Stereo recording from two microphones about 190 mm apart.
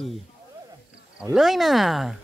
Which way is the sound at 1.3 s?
Centre (ahead or behind).